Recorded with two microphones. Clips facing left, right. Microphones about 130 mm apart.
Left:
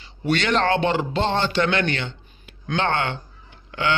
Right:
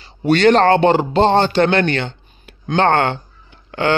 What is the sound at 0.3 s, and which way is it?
Speech, 45° right (ahead or behind).